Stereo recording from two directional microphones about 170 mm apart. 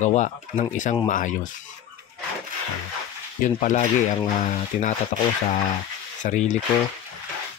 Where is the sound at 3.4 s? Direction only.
45° left (ahead or behind).